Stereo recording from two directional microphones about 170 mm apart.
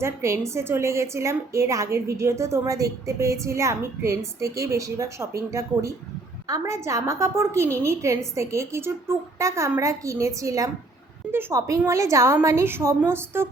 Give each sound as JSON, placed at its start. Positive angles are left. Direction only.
{"t": 0.0, "sound": "a woman's voice", "side_deg": -15}